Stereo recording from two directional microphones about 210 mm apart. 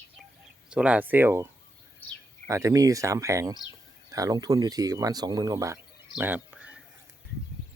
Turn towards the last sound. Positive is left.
turn(degrees=-5)  # may be behind; listen again after turning